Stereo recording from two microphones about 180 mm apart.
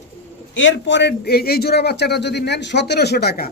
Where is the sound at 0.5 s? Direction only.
90° left; by 3.5 s 60° left (ahead or behind).